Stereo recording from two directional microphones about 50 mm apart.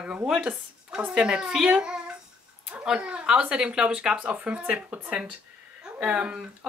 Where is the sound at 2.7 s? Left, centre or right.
Centre.